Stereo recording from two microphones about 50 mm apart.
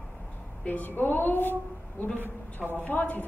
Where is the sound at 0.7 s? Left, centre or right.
Left.